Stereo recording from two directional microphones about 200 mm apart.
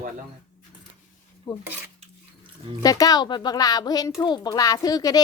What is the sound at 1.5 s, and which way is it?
Speech, 20° left (ahead or behind).